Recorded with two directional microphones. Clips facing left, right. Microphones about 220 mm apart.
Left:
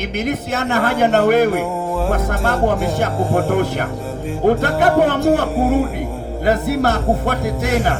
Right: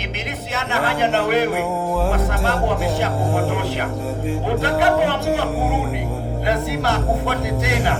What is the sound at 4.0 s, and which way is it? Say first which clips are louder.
Speech: right 1 dB; centre (ahead or behind).